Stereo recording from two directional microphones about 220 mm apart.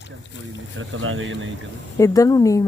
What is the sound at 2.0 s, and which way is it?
Speech, 15° left (ahead or behind).